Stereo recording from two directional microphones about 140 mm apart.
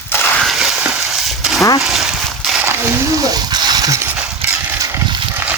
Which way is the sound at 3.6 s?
30° right (ahead or behind).